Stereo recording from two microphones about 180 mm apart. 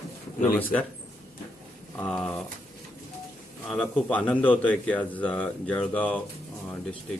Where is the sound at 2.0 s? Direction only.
5° left (ahead or behind).